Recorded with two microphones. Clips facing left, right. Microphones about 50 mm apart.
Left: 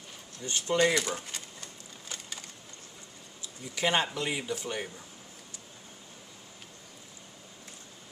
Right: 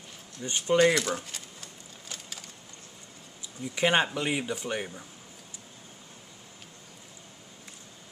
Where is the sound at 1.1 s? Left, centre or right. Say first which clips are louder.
Right 1 dB; centre.